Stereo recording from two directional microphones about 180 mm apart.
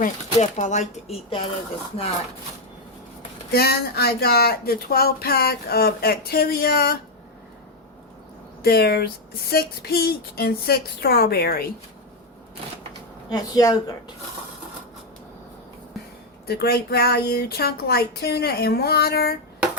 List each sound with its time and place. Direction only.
0.0 s speech: 40° left (ahead or behind)
3.5 s speech: 60° left (ahead or behind)
8.6 s speech: 60° left (ahead or behind)
13.3 s speech: 20° left (ahead or behind)
16.5 s speech: 60° left (ahead or behind)